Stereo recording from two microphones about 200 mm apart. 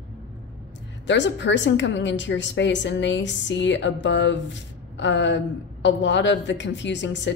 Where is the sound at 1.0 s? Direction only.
65° left (ahead or behind).